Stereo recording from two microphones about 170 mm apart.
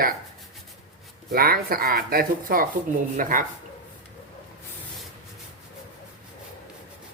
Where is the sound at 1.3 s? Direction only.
60° right (ahead or behind).